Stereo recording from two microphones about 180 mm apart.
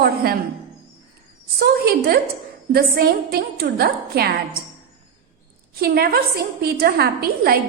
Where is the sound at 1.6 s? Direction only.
60° right (ahead or behind).